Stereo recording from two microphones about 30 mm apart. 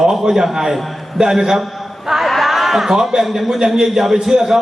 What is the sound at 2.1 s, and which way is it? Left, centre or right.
Speech, centre.